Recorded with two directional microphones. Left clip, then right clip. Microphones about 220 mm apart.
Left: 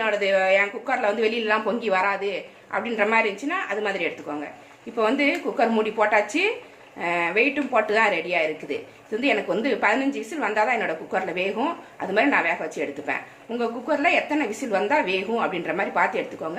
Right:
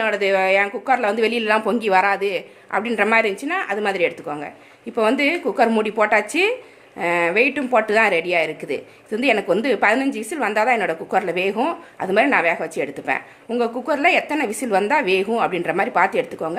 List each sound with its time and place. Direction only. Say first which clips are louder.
0.0 s speech: right 3 dB; 55° right (ahead or behind)